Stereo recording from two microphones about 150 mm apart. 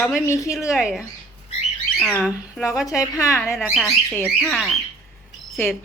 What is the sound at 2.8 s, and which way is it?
Speech, 20° left (ahead or behind).